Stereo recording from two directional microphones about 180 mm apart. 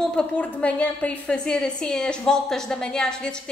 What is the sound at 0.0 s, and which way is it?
Speech, 5° left (ahead or behind).